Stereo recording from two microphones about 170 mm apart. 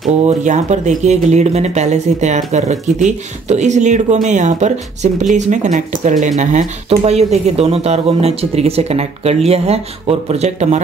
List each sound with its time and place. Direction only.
0.0 s speech: 45° right (ahead or behind)